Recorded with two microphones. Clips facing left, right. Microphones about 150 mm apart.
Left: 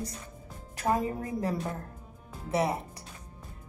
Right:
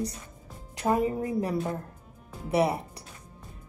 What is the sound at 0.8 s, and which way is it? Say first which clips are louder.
Speech: right 3 dB; 20° right (ahead or behind).